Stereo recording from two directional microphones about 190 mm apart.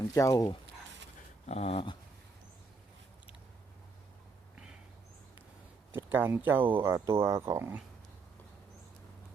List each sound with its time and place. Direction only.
0.1 s speech: 15° left (ahead or behind)
1.5 s dog: 35° left (ahead or behind)
5.9 s speech: 10° right (ahead or behind)